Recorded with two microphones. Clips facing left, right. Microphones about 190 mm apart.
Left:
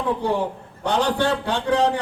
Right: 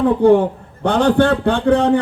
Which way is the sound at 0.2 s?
55° right (ahead or behind).